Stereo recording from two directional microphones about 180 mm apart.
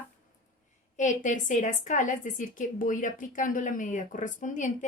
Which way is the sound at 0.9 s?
45° left (ahead or behind).